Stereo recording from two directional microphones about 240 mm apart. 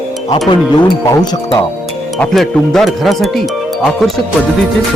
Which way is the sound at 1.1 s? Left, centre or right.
Centre.